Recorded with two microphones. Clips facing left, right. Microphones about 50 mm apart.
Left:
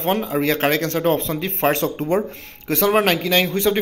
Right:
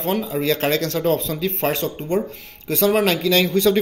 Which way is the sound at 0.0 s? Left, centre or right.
Left.